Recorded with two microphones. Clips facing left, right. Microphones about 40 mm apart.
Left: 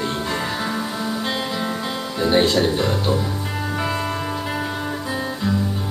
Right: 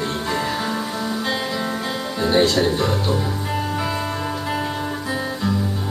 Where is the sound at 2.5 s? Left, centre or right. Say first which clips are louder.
Even; centre.